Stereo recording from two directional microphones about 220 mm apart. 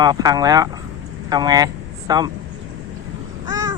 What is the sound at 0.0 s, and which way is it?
Speech, 15° right (ahead or behind).